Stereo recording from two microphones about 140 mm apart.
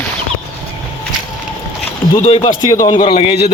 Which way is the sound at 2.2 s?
45° left (ahead or behind).